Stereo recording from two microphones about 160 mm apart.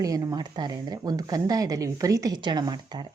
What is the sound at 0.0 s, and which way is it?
Speech, 20° right (ahead or behind).